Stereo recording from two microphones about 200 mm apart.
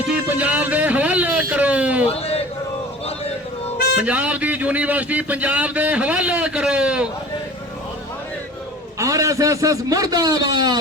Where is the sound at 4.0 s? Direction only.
5° right (ahead or behind).